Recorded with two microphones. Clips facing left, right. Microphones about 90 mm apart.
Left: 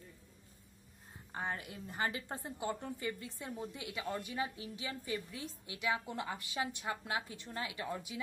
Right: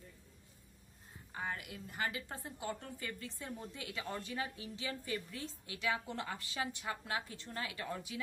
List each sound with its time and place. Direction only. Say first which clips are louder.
1.3 s a woman's voice: left 2 dB; 30° left (ahead or behind)